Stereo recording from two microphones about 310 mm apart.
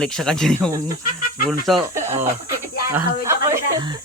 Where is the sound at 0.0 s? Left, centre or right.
Centre.